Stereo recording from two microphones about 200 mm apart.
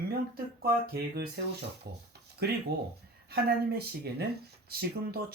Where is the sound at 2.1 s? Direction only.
55° right (ahead or behind).